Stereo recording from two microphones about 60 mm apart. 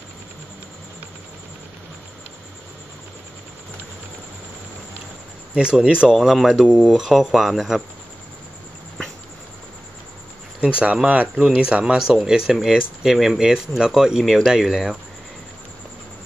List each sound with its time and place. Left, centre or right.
5.5 s speech: centre
6.1 s speech: centre
10.6 s speech: centre